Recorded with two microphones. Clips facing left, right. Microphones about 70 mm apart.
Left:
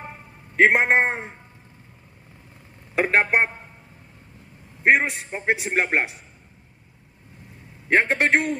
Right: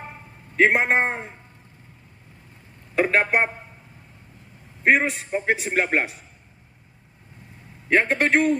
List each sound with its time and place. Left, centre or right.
0.6 s a man's voice: left
3.0 s a man's voice: left
4.8 s a man's voice: centre
7.9 s a man's voice: left